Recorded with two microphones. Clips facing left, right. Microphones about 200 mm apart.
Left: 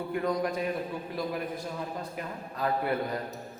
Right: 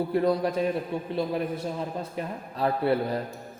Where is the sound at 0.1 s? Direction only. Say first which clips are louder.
Right 2 dB; 35° right (ahead or behind).